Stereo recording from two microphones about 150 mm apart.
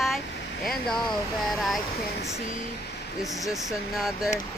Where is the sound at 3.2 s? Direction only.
Centre (ahead or behind).